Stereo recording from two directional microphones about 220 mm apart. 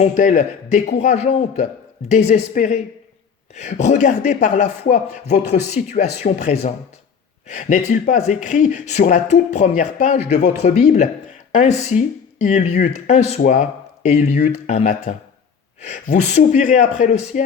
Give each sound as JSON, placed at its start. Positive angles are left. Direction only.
{"t": 0.0, "sound": "speech", "side_deg": 35}